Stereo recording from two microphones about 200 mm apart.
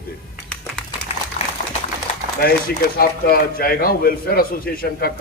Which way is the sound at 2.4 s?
50° left (ahead or behind).